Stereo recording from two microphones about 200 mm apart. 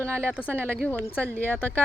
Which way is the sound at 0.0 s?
10° right (ahead or behind).